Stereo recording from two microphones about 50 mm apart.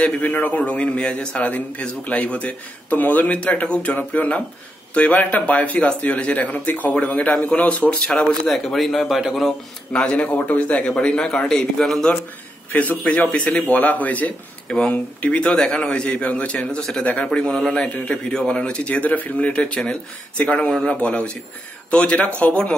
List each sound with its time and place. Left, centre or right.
0.1 s a man's voice: left
3.6 s a man's voice: left
8.3 s a man's voice: centre
9.9 s a man's voice: left; by 12.1 s centre
12.7 s a man's voice: left
13.7 s a man's voice: left
16.5 s a man's voice: centre
17.8 s a man's voice: left
18.1 s a man's voice: centre